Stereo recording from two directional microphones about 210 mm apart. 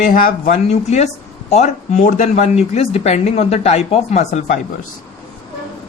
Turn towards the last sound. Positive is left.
turn(degrees=30)  # may be behind; listen again after turning